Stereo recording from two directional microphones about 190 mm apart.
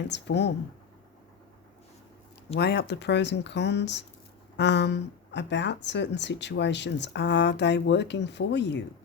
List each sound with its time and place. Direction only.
0.1 s speech: 65° left (ahead or behind)
2.6 s speech: 60° left (ahead or behind)